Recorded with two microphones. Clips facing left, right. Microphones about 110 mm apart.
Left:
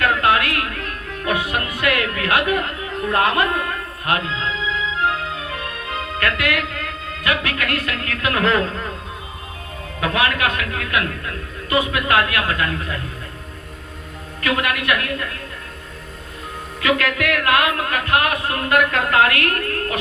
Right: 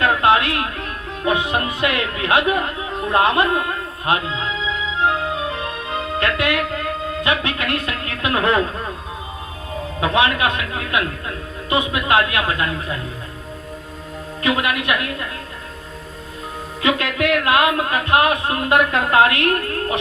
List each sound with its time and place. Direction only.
0.0 s music: 20° right (ahead or behind)
7.3 s speech: 25° right (ahead or behind)
10.0 s speech: 25° right (ahead or behind)
14.4 s speech: 20° right (ahead or behind)
16.8 s speech: 25° right (ahead or behind)